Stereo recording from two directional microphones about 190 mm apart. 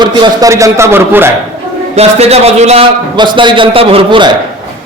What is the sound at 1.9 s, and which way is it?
A man's voice, 35° right (ahead or behind).